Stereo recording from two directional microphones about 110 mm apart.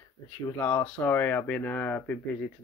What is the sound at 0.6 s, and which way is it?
Speech, 15° left (ahead or behind).